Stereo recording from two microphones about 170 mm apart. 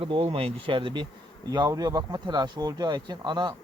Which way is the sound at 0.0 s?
35° right (ahead or behind).